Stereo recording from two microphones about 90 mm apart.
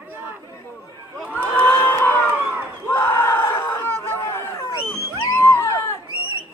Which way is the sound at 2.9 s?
25° left (ahead or behind).